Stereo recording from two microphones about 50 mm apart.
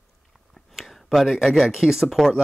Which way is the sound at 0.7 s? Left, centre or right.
Centre.